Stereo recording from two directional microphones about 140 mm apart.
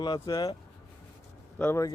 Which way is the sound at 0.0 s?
30° left (ahead or behind).